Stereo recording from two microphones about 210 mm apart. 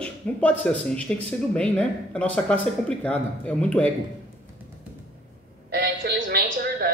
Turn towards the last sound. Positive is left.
turn(degrees=-45)  # may be behind; listen again after turning